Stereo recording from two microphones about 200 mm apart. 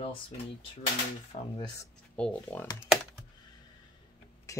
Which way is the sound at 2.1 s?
5° left (ahead or behind).